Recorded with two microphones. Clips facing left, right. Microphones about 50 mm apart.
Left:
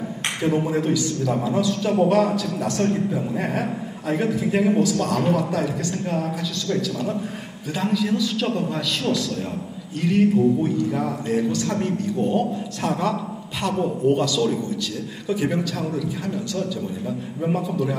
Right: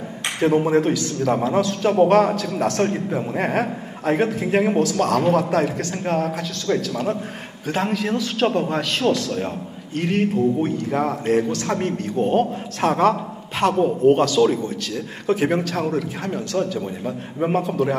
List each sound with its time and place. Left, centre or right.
0.7 s a man's voice: right
2.5 s a man's voice: right